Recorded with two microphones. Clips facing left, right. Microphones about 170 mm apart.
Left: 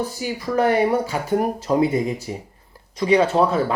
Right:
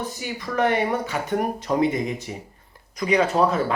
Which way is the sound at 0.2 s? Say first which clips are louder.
Left 2 dB; 35° left (ahead or behind).